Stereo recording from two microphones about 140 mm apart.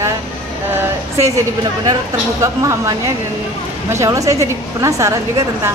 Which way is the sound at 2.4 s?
20° right (ahead or behind).